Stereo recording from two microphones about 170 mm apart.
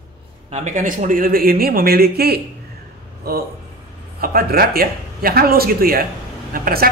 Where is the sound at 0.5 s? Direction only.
45° right (ahead or behind).